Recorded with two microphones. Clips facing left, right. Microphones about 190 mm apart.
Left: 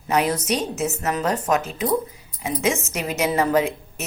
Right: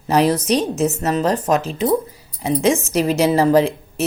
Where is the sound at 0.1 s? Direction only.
35° right (ahead or behind).